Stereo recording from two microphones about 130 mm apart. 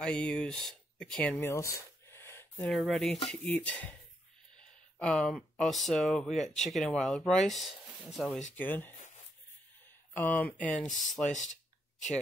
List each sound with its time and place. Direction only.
0.0 s speech: 10° left (ahead or behind)
1.3 s a sound: 20° left (ahead or behind)
2.7 s speech: centre (ahead or behind)
4.9 s speech: 5° left (ahead or behind)
8.5 s speech: 15° left (ahead or behind)
10.1 s speech: 15° left (ahead or behind)
10.9 s speech: centre (ahead or behind)
11.2 s speech: 70° left (ahead or behind)